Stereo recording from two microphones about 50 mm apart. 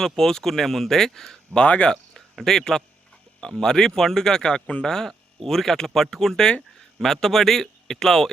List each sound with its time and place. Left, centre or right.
0.0 s speech: centre
1.6 s speech: left
2.4 s speech: centre